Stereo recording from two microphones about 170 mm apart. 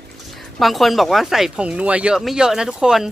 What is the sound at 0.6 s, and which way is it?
Speech, centre (ahead or behind).